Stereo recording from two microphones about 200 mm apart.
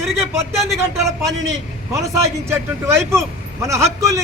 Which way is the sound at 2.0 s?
15° right (ahead or behind).